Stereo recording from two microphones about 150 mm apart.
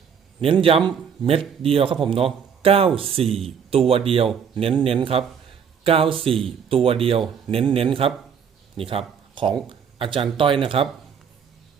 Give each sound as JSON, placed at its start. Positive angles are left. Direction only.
{"t": 0.4, "sound": "speech", "side_deg": -40}